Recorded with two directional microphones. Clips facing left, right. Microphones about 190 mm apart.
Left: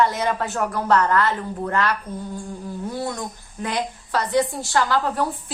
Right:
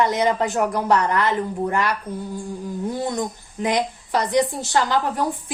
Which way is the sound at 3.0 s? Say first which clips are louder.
Right 4 dB; 20° right (ahead or behind).